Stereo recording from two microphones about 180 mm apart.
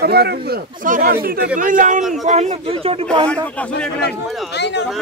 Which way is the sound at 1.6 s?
50° right (ahead or behind).